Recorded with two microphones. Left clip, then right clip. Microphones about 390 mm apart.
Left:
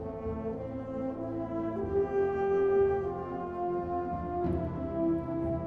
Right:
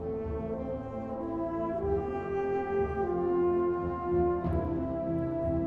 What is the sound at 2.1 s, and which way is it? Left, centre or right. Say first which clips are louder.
Music: left 3 dB; right.